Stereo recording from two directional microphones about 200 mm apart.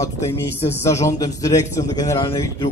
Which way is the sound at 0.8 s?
15° left (ahead or behind).